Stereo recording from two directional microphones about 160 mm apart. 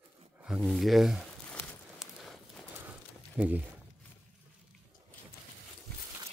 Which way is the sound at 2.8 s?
10° right (ahead or behind).